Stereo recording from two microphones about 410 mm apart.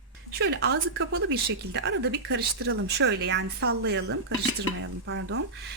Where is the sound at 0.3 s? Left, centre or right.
Right.